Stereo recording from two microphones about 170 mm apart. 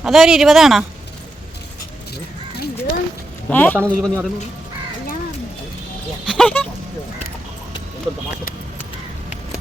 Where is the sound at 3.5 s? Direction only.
10° left (ahead or behind).